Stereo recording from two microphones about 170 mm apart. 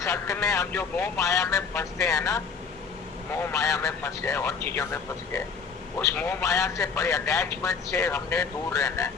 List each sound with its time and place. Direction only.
0.0 s a man's voice: 20° left (ahead or behind)
3.5 s a man's voice: 20° left (ahead or behind)